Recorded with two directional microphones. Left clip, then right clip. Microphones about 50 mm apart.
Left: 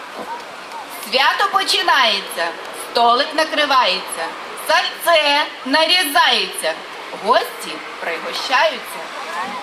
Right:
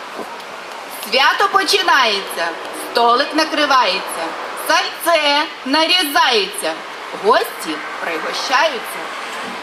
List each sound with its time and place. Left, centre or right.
1.1 s a woman's voice: centre
8.3 s a woman's voice: centre